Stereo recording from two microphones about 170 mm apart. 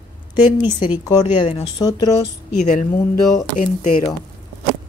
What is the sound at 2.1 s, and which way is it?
Speech, 45° left (ahead or behind).